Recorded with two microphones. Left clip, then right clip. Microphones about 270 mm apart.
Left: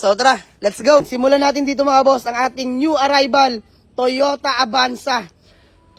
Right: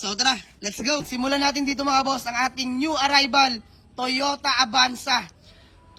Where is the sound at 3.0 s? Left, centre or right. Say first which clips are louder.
Left 5 dB; centre.